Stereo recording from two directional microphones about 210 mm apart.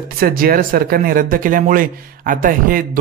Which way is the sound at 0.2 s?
45° right (ahead or behind).